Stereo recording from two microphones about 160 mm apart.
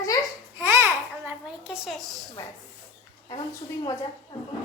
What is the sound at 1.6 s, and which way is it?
Speech, 5° right (ahead or behind).